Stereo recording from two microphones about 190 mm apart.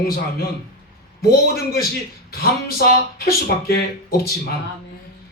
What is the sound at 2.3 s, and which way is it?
Speech, 55° left (ahead or behind).